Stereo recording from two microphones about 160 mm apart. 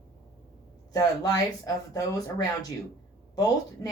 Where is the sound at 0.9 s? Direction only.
20° left (ahead or behind).